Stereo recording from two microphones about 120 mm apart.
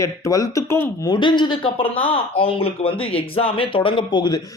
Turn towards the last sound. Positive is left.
turn(degrees=40)  # may be behind; listen again after turning